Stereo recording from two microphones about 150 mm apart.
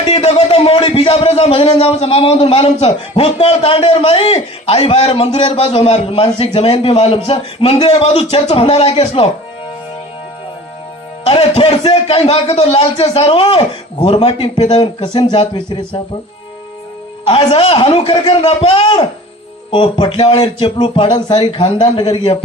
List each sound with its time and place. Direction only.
0.1 s speech: 45° left (ahead or behind)
11.3 s speech: 40° left (ahead or behind)
17.2 s speech: 40° left (ahead or behind)